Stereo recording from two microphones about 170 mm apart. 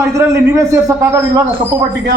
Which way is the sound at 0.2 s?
15° right (ahead or behind).